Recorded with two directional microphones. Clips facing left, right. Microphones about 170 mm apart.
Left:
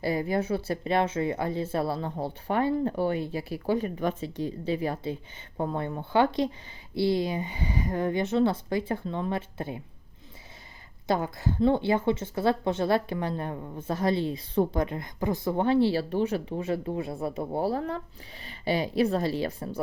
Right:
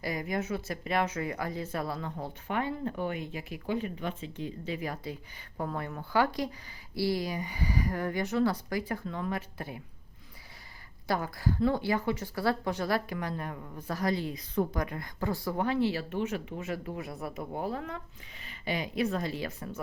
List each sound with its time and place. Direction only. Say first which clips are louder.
0.0 s a woman's voice: left 6 dB; 30° left (ahead or behind)
11.1 s a woman's voice: left 3 dB; 25° left (ahead or behind)